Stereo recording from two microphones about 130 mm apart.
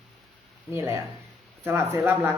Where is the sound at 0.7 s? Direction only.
20° right (ahead or behind).